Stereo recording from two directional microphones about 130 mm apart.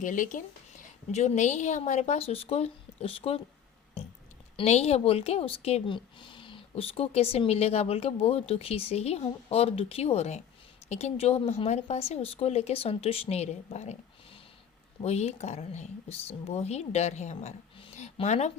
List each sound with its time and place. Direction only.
0.0 s a woman's voice: 80° left; by 3.4 s 50° left (ahead or behind)
4.6 s a woman's voice: 55° left (ahead or behind)
15.0 s a woman's voice: 55° left (ahead or behind)